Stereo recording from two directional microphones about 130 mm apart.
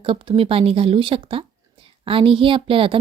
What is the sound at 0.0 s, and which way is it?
A woman's voice, 40° right (ahead or behind).